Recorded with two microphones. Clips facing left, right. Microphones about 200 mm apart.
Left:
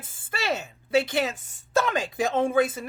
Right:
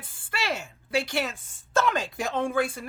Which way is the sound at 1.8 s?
20° left (ahead or behind).